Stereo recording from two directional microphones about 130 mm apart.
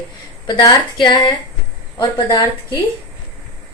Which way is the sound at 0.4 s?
35° left (ahead or behind).